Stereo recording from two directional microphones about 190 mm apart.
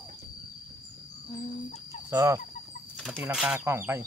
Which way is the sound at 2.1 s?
15° right (ahead or behind).